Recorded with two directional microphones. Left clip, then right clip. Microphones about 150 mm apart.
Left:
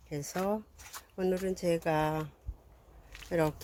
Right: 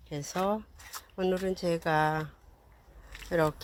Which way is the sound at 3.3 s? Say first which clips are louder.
Right 3 dB; 5° left (ahead or behind).